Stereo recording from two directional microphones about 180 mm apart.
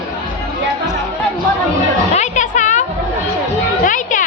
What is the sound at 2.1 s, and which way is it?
Music, 40° left (ahead or behind).